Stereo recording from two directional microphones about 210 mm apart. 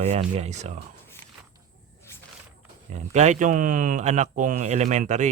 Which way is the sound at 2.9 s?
35° right (ahead or behind).